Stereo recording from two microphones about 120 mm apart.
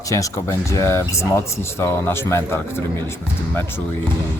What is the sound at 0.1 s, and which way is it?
Speech, 25° left (ahead or behind).